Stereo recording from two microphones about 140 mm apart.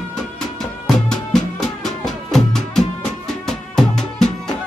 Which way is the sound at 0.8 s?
5° left (ahead or behind).